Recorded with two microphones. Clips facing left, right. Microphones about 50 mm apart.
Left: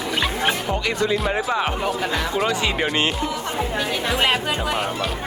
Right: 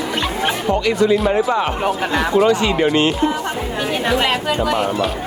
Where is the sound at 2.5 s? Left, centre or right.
Left.